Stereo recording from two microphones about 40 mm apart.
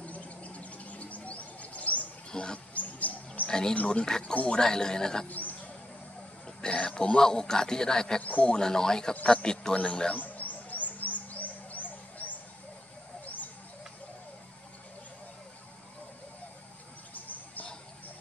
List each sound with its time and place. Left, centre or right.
0.0 s bird: left
2.3 s a man's voice: left
2.7 s wild animals: left
3.4 s speech: centre
3.7 s a man's voice: left
4.6 s speech: centre
5.3 s a sound: left
6.4 s a man's voice: left
8.2 s a man's voice: left
8.5 s a man's voice: centre
10.1 s bird: left
17.1 s a sound: left